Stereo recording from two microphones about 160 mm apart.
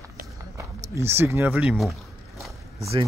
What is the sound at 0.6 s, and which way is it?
Speech, 15° right (ahead or behind).